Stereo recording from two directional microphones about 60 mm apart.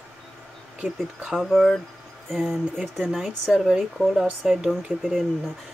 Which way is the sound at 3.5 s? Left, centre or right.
Centre.